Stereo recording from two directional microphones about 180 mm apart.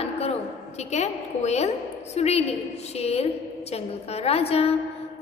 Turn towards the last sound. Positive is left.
turn(degrees=35)  # may be behind; listen again after turning